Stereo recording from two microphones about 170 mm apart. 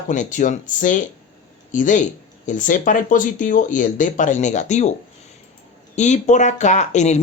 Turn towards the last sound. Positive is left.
turn(degrees=45)  # may be behind; listen again after turning